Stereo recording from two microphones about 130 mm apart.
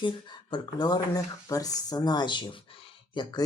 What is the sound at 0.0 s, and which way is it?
Speech, 35° left (ahead or behind).